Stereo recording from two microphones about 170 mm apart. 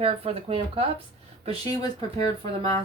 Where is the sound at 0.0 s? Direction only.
35° right (ahead or behind).